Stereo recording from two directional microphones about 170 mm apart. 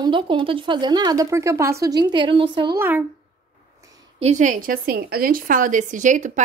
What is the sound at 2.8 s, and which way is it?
Speech, 10° right (ahead or behind).